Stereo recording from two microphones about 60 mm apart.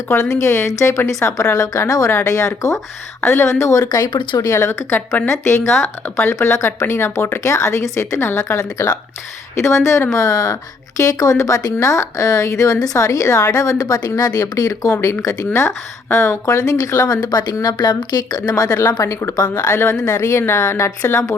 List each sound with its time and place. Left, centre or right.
0.1 s speech: left
1.4 s speech: left
3.2 s speech: left
3.6 s speech: left
4.6 s speech: left
4.9 s speech: left
5.3 s speech: left
10.1 s speech: left
15.0 s speech: left
20.5 s speech: left